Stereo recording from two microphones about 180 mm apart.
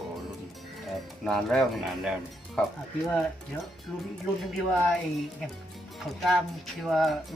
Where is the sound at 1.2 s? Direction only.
5° left (ahead or behind).